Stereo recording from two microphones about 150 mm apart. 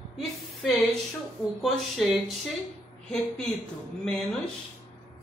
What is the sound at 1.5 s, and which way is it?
Speech, centre (ahead or behind).